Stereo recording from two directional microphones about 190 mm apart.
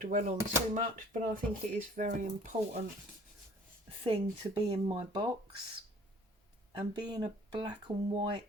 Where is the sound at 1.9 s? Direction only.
40° right (ahead or behind).